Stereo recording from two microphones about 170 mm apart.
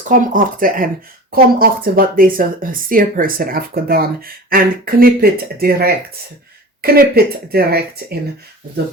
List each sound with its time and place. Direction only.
0.1 s speech: 55° right (ahead or behind)